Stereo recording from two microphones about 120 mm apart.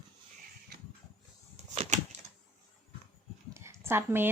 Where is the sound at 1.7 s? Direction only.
60° right (ahead or behind).